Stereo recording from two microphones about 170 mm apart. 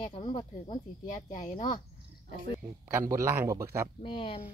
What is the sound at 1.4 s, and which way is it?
Speech, 50° left (ahead or behind).